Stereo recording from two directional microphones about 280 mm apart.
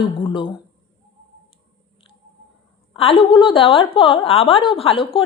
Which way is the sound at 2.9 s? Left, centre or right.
Centre.